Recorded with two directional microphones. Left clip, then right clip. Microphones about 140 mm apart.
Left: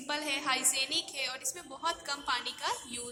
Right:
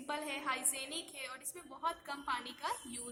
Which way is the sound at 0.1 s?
10° right (ahead or behind).